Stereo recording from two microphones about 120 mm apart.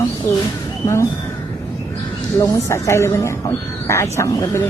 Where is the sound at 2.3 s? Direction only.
25° left (ahead or behind).